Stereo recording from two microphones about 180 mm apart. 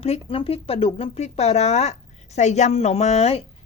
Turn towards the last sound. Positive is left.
turn(degrees=35)  # may be behind; listen again after turning